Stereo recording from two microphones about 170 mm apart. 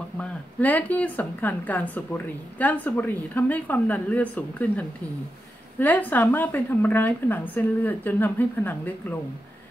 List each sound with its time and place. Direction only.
0.2 s speech: 10° left (ahead or behind)